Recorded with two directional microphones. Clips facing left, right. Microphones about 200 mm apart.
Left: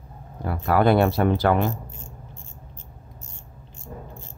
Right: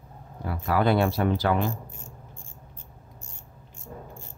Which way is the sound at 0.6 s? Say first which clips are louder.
Left 4 dB; 55° left (ahead or behind).